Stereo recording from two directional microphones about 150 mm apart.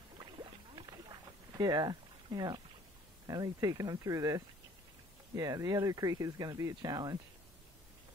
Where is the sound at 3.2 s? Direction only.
25° right (ahead or behind).